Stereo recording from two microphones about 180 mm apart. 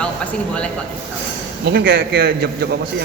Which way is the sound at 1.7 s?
60° right (ahead or behind).